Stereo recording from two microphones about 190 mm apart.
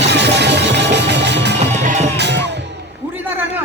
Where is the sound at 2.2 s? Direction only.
65° right (ahead or behind).